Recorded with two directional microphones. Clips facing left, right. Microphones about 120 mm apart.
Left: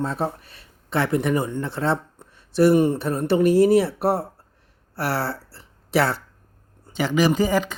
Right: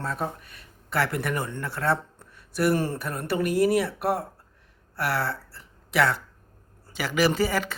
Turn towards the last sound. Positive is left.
turn(degrees=20)  # may be behind; listen again after turning